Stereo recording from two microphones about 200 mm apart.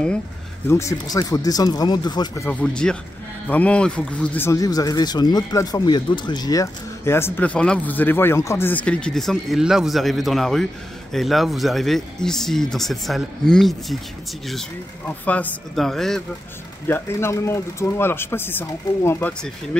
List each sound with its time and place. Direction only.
0.7 s speech: 15° left (ahead or behind)
2.6 s speech: 5° left (ahead or behind)
15.0 s speech: 5° left (ahead or behind)